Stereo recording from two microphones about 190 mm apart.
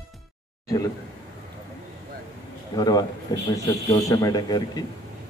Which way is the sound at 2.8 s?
20° left (ahead or behind).